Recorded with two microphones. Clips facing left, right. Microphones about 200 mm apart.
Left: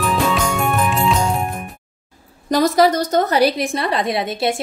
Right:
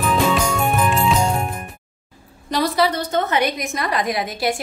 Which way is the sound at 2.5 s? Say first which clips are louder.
Left 5 dB; 45° left (ahead or behind).